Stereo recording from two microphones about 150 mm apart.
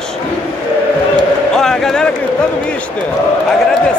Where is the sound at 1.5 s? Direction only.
5° left (ahead or behind).